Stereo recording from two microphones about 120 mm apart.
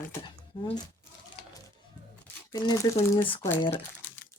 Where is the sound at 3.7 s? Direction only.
15° left (ahead or behind).